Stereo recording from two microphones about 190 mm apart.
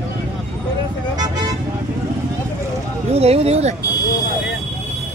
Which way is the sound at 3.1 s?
35° right (ahead or behind).